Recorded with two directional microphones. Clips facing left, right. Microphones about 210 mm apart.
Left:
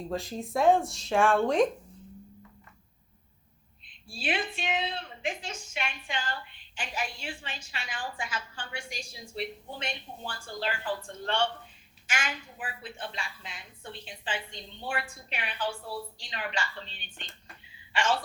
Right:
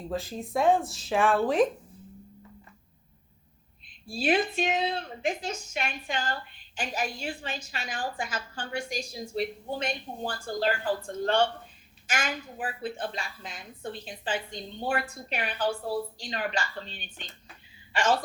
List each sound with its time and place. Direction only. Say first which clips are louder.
0.1 s speech: right 2 dB; centre (ahead or behind)
4.1 s a woman's voice: right 7 dB; 40° right (ahead or behind)